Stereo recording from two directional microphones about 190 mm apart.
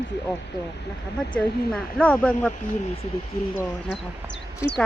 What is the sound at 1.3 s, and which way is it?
Speech, 5° left (ahead or behind).